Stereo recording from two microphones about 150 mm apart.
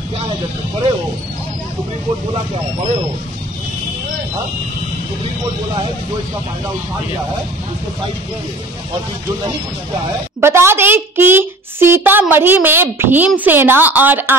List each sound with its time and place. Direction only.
2.3 s speech: 40° right (ahead or behind)
10.4 s speech: 15° right (ahead or behind)